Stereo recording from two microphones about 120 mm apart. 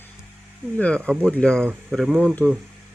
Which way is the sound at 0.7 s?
10° left (ahead or behind).